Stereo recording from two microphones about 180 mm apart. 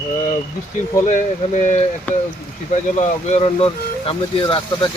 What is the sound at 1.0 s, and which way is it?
Speech, 40° left (ahead or behind).